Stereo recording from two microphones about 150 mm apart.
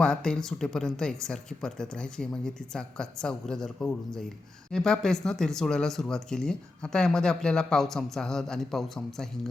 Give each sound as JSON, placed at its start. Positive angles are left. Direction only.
{"t": 0.0, "sound": "speech", "side_deg": 5}